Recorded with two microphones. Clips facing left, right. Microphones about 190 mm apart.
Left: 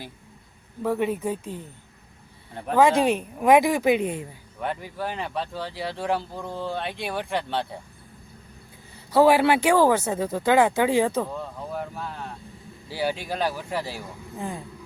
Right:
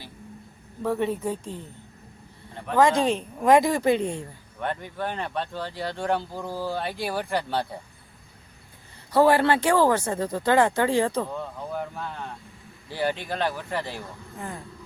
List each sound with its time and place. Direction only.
0.8 s speech: 5° left (ahead or behind)
2.7 s speech: 10° left (ahead or behind)
9.1 s speech: 10° left (ahead or behind)